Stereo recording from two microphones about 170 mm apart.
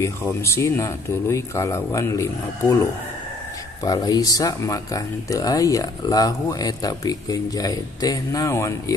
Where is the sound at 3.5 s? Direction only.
20° left (ahead or behind).